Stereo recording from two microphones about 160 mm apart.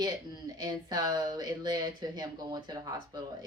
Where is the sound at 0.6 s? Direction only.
25° right (ahead or behind).